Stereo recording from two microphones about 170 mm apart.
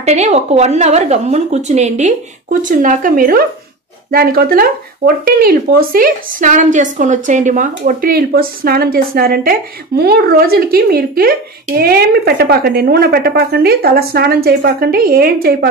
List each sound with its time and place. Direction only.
0.0 s speech: 40° right (ahead or behind); by 15.7 s 60° right (ahead or behind)